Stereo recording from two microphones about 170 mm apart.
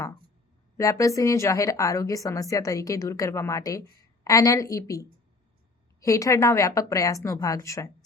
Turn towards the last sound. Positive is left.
turn(degrees=20)  # may be behind; listen again after turning